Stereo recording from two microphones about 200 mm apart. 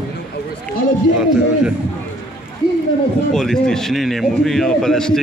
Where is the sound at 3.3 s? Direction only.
Centre (ahead or behind).